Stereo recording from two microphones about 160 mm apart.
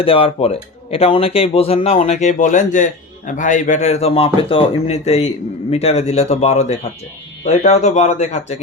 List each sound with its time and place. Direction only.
0.0 s speech: 35° left (ahead or behind)